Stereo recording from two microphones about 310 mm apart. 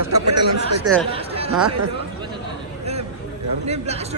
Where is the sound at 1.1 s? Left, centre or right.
Centre.